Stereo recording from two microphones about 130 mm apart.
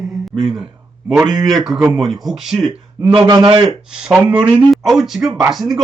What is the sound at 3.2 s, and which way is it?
Speech, 30° right (ahead or behind).